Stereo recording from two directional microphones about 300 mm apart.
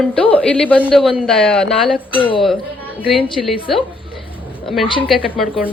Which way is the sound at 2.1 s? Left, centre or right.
Centre.